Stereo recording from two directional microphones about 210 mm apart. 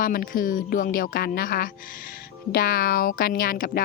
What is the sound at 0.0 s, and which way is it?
A woman's voice, 40° left (ahead or behind).